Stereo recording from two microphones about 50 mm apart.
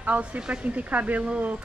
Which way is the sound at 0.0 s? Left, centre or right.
Right.